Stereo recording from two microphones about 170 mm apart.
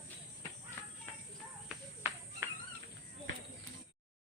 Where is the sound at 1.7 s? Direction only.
10° right (ahead or behind).